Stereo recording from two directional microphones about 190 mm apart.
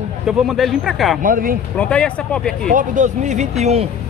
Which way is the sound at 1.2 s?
45° right (ahead or behind).